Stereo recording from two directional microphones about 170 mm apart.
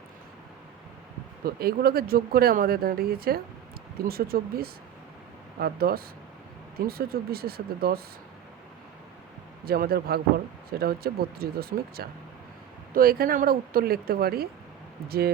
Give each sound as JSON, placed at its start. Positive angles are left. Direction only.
{"t": 1.5, "sound": "speech", "side_deg": -65}
{"t": 9.6, "sound": "speech", "side_deg": -60}